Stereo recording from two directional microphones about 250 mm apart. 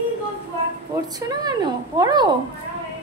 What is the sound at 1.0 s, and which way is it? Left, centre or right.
Speech, centre.